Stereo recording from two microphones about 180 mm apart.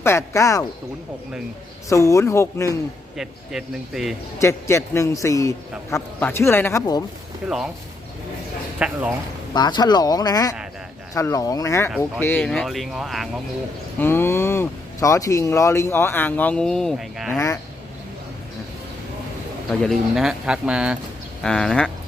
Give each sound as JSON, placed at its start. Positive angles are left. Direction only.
{"t": 0.0, "sound": "speech", "side_deg": 15}
{"t": 1.9, "sound": "speech", "side_deg": 15}
{"t": 3.2, "sound": "speech", "side_deg": 0}
{"t": 4.4, "sound": "speech", "side_deg": 15}
{"t": 7.4, "sound": "speech", "side_deg": -5}
{"t": 8.8, "sound": "speech", "side_deg": -10}
{"t": 9.5, "sound": "speech", "side_deg": 25}
{"t": 14.0, "sound": "speech", "side_deg": 10}
{"t": 17.2, "sound": "speech", "side_deg": 15}
{"t": 19.8, "sound": "speech", "side_deg": 0}